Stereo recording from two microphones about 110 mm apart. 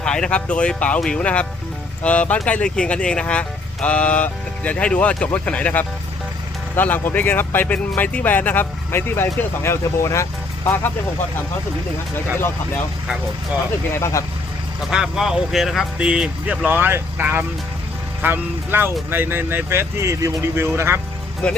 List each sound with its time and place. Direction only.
0.0 s speech: 5° left (ahead or behind)
14.0 s speech: 30° left (ahead or behind)
14.8 s speech: 5° right (ahead or behind)
16.6 s speech: 20° right (ahead or behind)
21.4 s speech: 10° left (ahead or behind)